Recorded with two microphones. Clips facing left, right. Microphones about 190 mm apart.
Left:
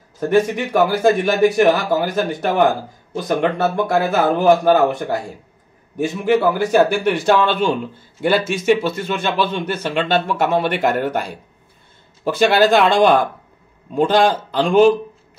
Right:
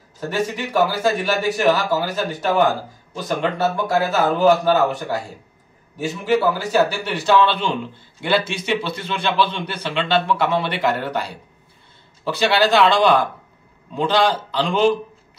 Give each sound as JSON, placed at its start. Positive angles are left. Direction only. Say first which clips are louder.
{"t": 0.8, "sound": "speech", "louder": "left 5 dB", "side_deg": 55}
{"t": 5.9, "sound": "a man's voice", "louder": "left 3 dB", "side_deg": 55}